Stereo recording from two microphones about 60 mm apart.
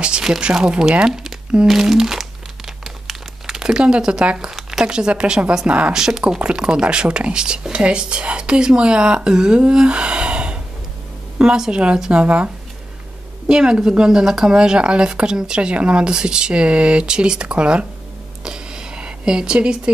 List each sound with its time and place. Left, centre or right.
0.0 s speech: centre
1.7 s crumpling: centre
5.7 s speech: right
5.9 s speech: centre
13.5 s speech: centre
18.4 s a sound: centre